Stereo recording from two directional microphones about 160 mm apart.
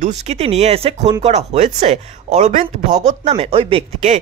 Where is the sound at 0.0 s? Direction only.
45° right (ahead or behind).